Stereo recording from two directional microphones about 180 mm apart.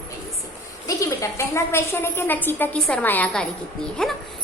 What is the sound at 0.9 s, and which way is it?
A woman's voice, 15° left (ahead or behind).